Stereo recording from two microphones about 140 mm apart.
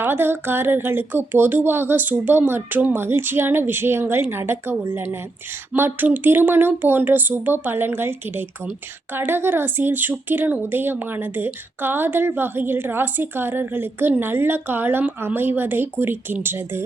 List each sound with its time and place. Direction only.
0.0 s speech: 15° right (ahead or behind)